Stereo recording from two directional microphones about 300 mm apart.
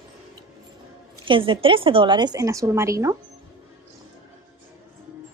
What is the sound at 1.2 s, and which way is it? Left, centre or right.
A child's voice, centre.